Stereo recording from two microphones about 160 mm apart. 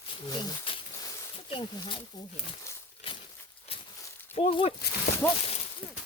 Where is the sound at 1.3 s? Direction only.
35° left (ahead or behind).